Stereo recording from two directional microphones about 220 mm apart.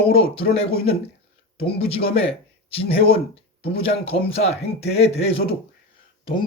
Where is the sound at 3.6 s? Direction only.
25° left (ahead or behind).